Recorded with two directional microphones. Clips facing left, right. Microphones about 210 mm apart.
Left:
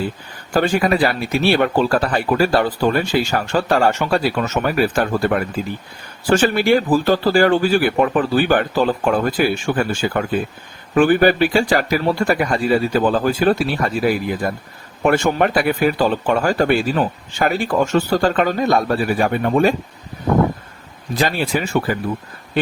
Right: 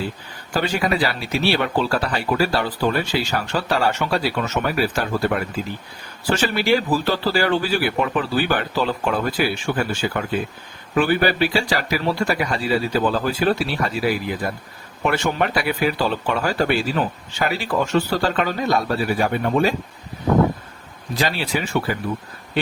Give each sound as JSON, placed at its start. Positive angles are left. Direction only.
{"t": 0.5, "sound": "speech", "side_deg": 50}
{"t": 21.2, "sound": "speech", "side_deg": 50}